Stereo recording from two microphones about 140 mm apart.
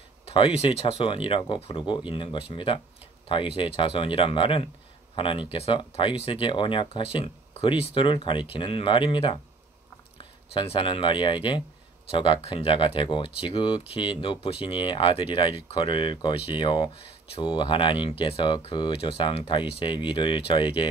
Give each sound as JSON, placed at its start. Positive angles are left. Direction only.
{"t": 0.2, "sound": "speech", "side_deg": 40}